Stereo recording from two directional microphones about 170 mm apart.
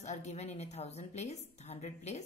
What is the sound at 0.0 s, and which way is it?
A woman's voice, 40° left (ahead or behind).